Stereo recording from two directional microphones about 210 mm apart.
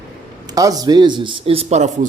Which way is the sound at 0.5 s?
15° right (ahead or behind).